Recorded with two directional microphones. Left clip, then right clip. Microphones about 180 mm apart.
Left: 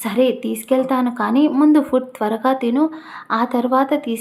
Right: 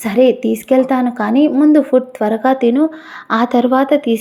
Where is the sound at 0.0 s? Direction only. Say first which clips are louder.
Right 6 dB; 20° right (ahead or behind).